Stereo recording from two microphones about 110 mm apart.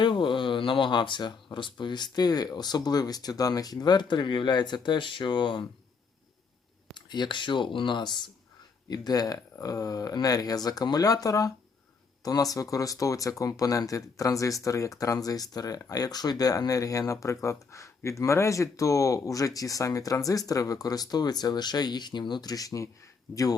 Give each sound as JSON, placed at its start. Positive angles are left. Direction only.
{"t": 0.0, "sound": "speech", "side_deg": 45}
{"t": 6.9, "sound": "speech", "side_deg": 45}